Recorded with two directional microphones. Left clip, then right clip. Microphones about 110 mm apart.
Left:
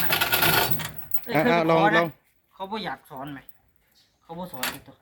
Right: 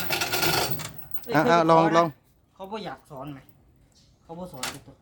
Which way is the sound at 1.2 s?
35° right (ahead or behind).